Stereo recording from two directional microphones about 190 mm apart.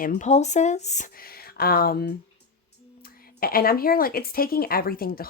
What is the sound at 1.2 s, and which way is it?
Speech, 50° left (ahead or behind).